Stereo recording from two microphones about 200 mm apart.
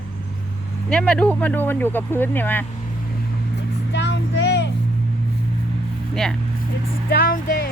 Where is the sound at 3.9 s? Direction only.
60° left (ahead or behind).